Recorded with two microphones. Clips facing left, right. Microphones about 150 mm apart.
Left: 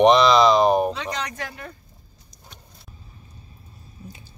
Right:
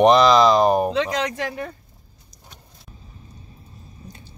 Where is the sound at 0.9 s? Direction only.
90° right.